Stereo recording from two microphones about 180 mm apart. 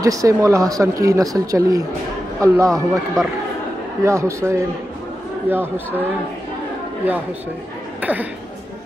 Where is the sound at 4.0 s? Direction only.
15° right (ahead or behind).